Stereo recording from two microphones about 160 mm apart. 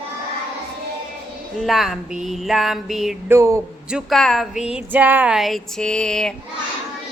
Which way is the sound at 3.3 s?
15° right (ahead or behind).